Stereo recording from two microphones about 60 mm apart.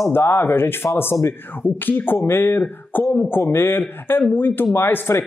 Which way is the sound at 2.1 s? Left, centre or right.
Left.